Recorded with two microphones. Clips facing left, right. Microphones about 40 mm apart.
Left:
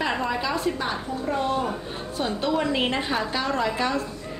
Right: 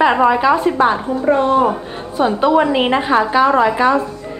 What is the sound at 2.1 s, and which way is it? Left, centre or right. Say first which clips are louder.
A woman's voice: right 12 dB; right.